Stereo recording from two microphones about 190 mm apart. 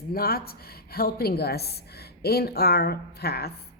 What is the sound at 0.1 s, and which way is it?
Speech, 55° left (ahead or behind).